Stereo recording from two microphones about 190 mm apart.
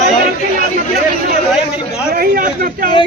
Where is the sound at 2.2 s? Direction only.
45° right (ahead or behind).